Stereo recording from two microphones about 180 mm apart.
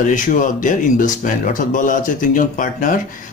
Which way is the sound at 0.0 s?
45° left (ahead or behind).